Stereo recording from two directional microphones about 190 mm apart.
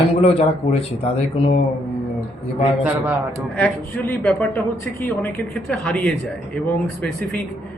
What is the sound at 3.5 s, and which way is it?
A man's voice, 5° left (ahead or behind).